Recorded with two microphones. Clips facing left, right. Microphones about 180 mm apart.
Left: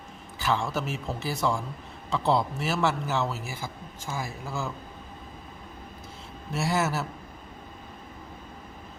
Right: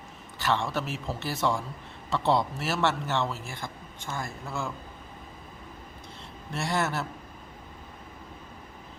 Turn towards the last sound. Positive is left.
turn(degrees=5)  # may be behind; listen again after turning